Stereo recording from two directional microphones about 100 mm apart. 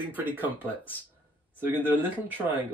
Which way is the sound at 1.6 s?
20° right (ahead or behind).